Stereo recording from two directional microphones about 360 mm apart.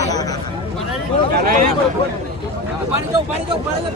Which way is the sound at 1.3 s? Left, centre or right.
Right.